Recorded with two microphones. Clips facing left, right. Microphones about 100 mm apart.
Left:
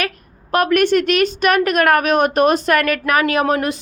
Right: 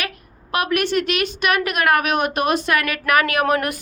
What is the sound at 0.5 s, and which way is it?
A woman's voice, 45° left (ahead or behind).